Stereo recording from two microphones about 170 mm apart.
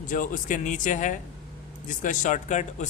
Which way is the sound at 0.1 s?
50° left (ahead or behind).